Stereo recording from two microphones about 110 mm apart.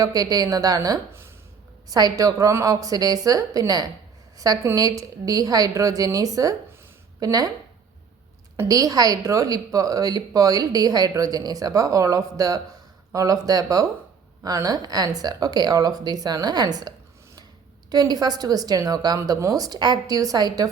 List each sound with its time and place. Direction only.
0.0 s a woman's voice: 35° right (ahead or behind)
8.6 s a woman's voice: 35° right (ahead or behind)